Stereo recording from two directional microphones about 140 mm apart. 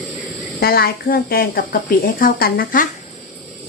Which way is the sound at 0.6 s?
90° left.